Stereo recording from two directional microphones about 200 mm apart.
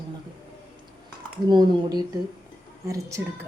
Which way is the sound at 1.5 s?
20° right (ahead or behind).